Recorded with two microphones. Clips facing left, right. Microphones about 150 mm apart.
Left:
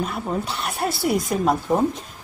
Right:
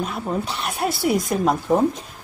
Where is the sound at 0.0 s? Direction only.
Centre (ahead or behind).